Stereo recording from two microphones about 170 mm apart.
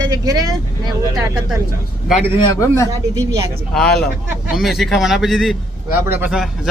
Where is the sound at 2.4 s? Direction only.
15° left (ahead or behind).